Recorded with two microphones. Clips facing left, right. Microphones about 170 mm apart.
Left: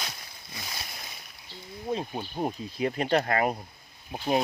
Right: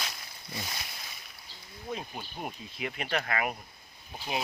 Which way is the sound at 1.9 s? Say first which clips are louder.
Left 7 dB; 30° left (ahead or behind).